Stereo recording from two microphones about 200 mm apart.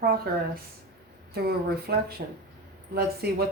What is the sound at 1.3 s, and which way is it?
Speech, 50° right (ahead or behind).